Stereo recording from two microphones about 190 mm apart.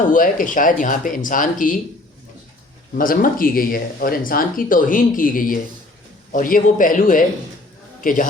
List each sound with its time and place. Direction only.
0.1 s speech: 45° left (ahead or behind)
3.0 s speech: 45° left (ahead or behind)